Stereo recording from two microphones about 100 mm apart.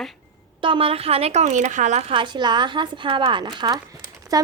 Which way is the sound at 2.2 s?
50° right (ahead or behind).